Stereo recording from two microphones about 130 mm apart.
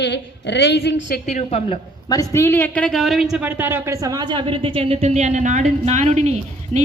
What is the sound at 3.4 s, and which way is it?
A woman's voice, 15° right (ahead or behind).